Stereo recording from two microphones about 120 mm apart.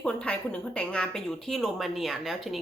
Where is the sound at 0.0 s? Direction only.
10° left (ahead or behind).